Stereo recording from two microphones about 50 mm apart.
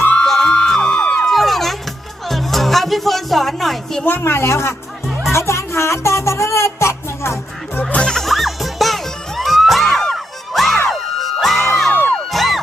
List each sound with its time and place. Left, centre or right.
0.3 s music: centre
1.3 s music: centre
4.2 s a woman's voice: left
5.3 s music: left
7.8 s music: left
8.0 s music: centre